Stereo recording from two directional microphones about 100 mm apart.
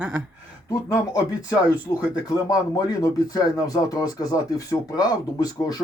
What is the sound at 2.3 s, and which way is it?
Speech, 40° left (ahead or behind).